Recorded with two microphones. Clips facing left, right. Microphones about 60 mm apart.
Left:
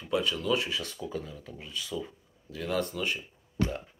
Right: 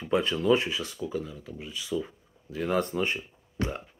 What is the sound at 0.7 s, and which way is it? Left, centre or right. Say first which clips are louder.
Speech: right 3 dB; centre.